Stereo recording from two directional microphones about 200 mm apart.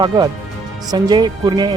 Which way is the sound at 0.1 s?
20° right (ahead or behind).